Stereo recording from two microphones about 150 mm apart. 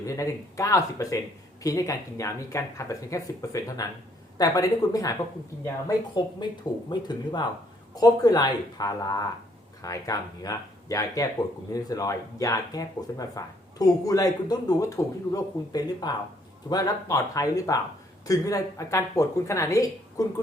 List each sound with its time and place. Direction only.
0.0 s speech: 20° left (ahead or behind)